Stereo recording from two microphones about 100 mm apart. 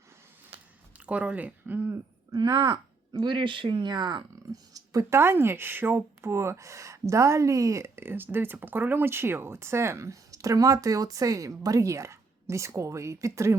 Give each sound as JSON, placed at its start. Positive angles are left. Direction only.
{"t": 0.9, "sound": "speech", "side_deg": -15}
{"t": 2.3, "sound": "speech", "side_deg": -45}